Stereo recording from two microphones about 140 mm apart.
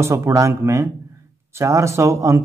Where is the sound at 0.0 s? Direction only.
20° right (ahead or behind).